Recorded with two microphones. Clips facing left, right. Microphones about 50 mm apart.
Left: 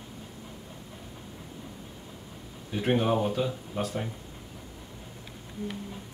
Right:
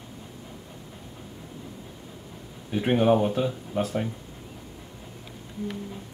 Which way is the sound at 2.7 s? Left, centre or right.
Centre.